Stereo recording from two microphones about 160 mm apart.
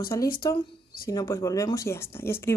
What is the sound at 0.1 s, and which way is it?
Speech, 20° left (ahead or behind).